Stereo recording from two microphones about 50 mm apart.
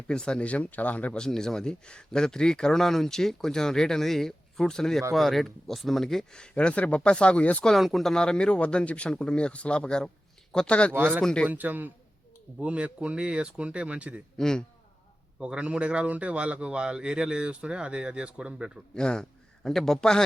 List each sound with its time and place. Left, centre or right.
0.1 s speech: centre
0.4 s speech: left
1.1 s speech: centre
6.4 s speech: left
7.8 s speech: centre
8.1 s speech: centre
11.4 s a man's voice: right
12.6 s a man's voice: right
14.3 s speech: centre
15.4 s a man's voice: right
18.9 s a sound: centre
19.7 s speech: centre